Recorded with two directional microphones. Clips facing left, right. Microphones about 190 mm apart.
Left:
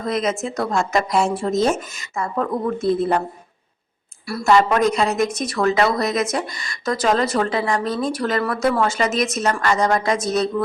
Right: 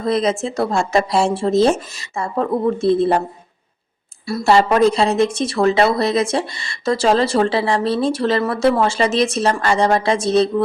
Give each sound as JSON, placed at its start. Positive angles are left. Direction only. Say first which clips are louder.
{"t": 0.0, "sound": "speech", "louder": "right 4 dB", "side_deg": -30}
{"t": 4.3, "sound": "speech", "louder": "right 2 dB", "side_deg": -25}